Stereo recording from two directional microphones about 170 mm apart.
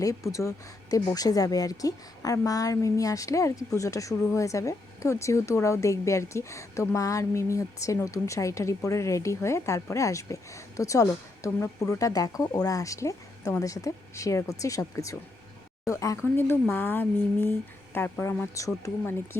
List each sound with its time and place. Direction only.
0.0 s speech: 20° left (ahead or behind)